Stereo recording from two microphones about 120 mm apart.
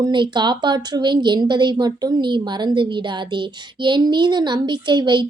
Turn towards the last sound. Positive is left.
turn(degrees=-40)  # may be behind; listen again after turning